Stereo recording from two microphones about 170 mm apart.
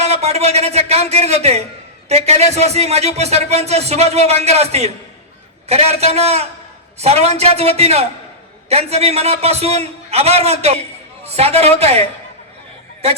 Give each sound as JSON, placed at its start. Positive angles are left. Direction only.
{"t": 0.0, "sound": "speech", "side_deg": -40}